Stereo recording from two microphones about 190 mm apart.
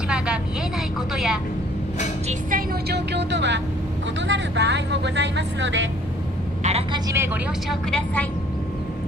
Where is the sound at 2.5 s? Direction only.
60° right (ahead or behind).